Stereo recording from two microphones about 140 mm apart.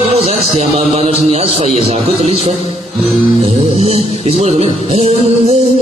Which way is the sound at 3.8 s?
50° right (ahead or behind).